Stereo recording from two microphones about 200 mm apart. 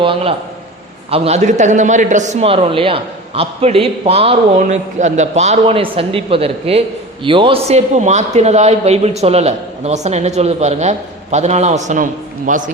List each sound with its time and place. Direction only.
0.0 s a man's voice: 25° right (ahead or behind)